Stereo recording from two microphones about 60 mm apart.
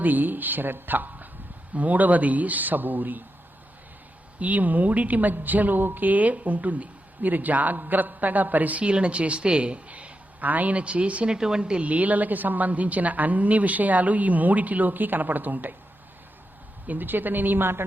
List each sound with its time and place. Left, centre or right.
0.0 s a woman's voice: right
4.4 s a woman's voice: right
16.8 s speech: right